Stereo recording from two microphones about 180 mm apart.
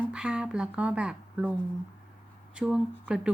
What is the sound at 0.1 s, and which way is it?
Speech, 5° right (ahead or behind).